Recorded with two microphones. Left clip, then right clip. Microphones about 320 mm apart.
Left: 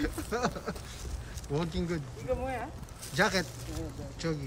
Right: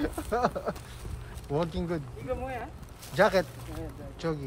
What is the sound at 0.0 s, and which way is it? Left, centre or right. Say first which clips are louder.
Speech: right 4 dB; centre.